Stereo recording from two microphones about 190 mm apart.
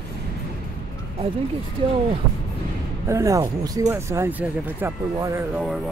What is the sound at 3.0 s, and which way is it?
Speech, 15° right (ahead or behind).